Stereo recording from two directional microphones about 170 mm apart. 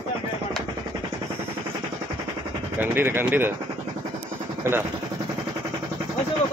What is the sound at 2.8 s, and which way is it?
Speech, 15° right (ahead or behind).